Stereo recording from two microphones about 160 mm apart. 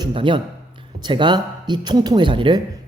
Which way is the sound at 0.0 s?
30° right (ahead or behind).